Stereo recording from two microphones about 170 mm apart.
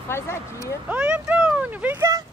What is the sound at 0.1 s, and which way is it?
Speech, 15° left (ahead or behind).